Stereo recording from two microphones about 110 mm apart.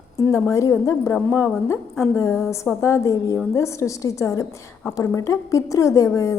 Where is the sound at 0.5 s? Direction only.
25° left (ahead or behind).